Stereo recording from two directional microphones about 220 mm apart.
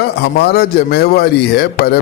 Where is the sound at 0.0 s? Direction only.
45° left (ahead or behind).